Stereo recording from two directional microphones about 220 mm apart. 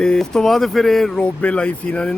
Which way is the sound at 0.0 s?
5° left (ahead or behind).